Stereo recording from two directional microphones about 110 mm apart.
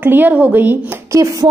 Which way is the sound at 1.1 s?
30° right (ahead or behind).